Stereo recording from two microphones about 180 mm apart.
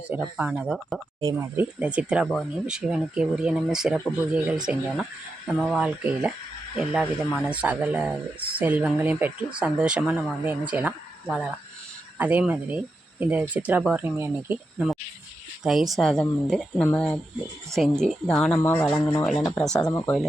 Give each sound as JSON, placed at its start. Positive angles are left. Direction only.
{"t": 0.1, "sound": "speech", "side_deg": -5}
{"t": 1.2, "sound": "speech", "side_deg": -15}
{"t": 19.8, "sound": "speech", "side_deg": 15}